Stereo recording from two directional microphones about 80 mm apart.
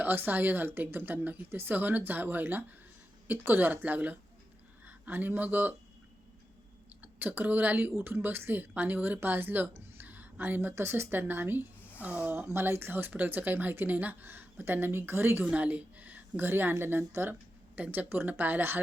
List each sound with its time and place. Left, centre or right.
0.0 s a woman's voice: right
7.0 s a woman's voice: right